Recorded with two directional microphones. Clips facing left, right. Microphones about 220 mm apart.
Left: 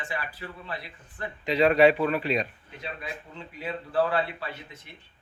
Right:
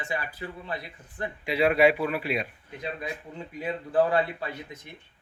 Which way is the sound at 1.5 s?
10° right (ahead or behind).